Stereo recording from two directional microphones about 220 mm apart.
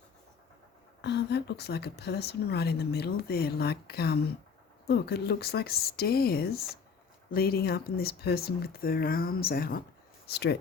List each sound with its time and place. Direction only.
1.0 s a woman's voice: 50° left (ahead or behind)